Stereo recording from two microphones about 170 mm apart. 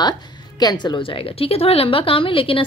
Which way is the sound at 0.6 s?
25° left (ahead or behind).